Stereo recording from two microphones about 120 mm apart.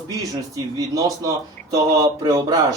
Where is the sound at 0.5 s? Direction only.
30° right (ahead or behind).